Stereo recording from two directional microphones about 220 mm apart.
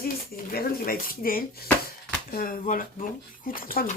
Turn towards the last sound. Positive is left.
turn(degrees=40)  # may be behind; listen again after turning